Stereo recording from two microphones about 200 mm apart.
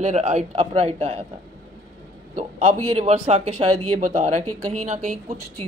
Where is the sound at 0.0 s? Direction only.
35° right (ahead or behind).